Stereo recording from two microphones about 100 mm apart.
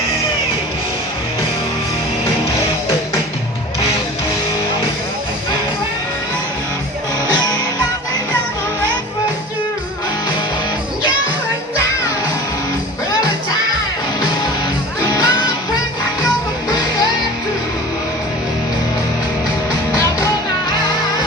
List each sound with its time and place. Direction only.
15.0 s music: 35° left (ahead or behind)